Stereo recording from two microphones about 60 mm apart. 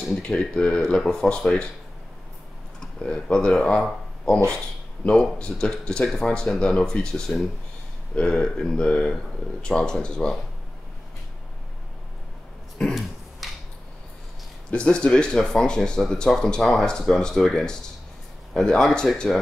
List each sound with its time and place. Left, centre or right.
0.2 s speech: centre
2.8 s speech: centre
5.1 s speech: centre
12.8 s a sound: centre
13.4 s a sound: centre
14.7 s speech: centre